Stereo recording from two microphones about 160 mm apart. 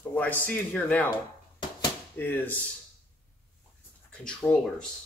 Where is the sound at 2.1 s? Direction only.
15° left (ahead or behind).